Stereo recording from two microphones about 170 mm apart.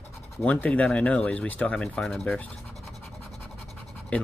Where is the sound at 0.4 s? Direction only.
10° left (ahead or behind).